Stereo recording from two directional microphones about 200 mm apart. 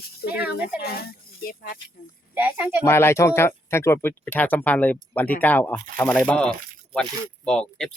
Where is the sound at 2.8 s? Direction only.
10° left (ahead or behind).